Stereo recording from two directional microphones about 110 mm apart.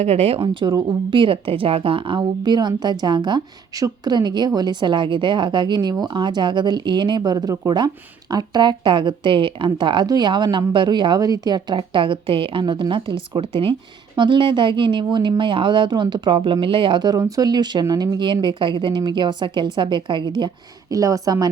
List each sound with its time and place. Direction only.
0.0 s speech: 70° right (ahead or behind)
0.4 s speech: 45° right (ahead or behind)
7.2 s a woman's voice: 35° right (ahead or behind)